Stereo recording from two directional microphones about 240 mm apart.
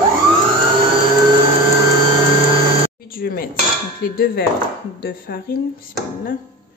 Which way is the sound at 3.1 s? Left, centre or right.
Left.